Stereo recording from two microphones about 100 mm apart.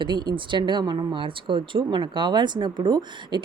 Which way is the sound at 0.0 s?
50° right (ahead or behind).